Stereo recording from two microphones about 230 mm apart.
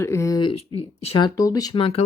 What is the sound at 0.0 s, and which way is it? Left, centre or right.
Speech, centre.